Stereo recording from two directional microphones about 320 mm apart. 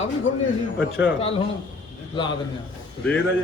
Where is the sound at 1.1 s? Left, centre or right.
Centre.